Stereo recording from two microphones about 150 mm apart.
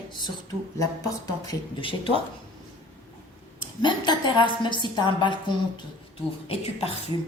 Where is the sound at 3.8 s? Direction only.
30° left (ahead or behind).